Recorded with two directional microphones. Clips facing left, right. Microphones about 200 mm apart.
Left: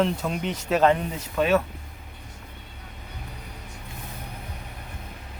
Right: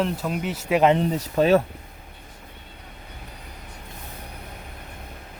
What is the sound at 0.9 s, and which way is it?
Speech, 35° right (ahead or behind).